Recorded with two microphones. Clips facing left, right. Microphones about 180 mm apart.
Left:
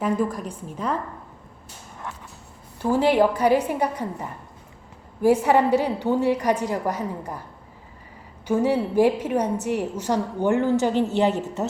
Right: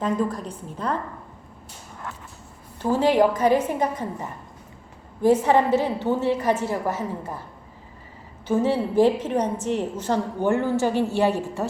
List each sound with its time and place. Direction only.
0.0 s a woman's voice: 10° left (ahead or behind)
2.9 s a woman's voice: 15° left (ahead or behind)
8.4 s a woman's voice: 10° left (ahead or behind)